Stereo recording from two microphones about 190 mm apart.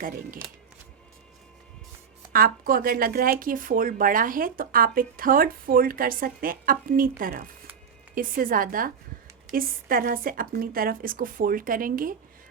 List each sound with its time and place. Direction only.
2.3 s speech: 50° right (ahead or behind)